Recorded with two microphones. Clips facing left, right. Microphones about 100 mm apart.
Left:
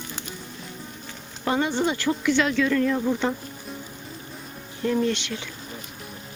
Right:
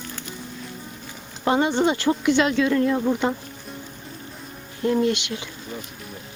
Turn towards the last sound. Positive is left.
turn(degrees=-10)  # may be behind; listen again after turning